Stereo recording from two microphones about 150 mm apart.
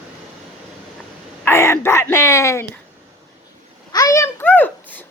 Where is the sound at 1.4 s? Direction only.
15° left (ahead or behind).